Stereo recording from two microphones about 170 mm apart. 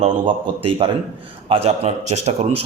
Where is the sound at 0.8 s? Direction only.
30° right (ahead or behind).